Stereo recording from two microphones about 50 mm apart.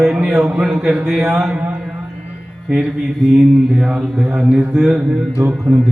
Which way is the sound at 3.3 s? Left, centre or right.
Centre.